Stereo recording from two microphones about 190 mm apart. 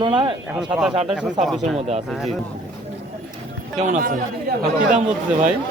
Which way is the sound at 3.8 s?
45° right (ahead or behind).